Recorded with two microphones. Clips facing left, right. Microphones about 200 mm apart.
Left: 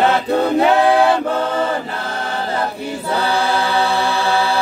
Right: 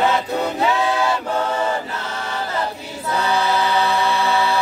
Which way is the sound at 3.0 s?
30° left (ahead or behind).